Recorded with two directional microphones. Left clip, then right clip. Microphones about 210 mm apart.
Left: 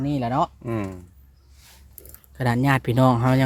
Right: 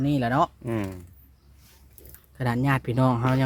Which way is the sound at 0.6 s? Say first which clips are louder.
Left 1 dB; centre (ahead or behind).